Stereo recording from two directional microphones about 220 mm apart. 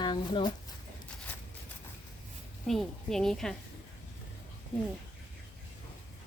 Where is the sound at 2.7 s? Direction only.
Centre (ahead or behind).